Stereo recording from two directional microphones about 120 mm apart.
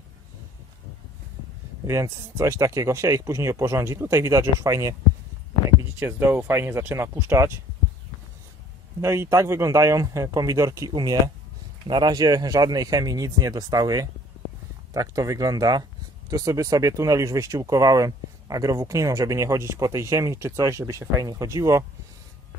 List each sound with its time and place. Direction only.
1.9 s speech: 25° right (ahead or behind)
5.9 s speech: 20° right (ahead or behind)
9.0 s speech: 20° right (ahead or behind)